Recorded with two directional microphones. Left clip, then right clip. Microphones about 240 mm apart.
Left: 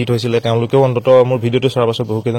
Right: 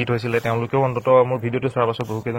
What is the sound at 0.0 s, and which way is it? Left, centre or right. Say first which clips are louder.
A man's voice: left 5 dB; left.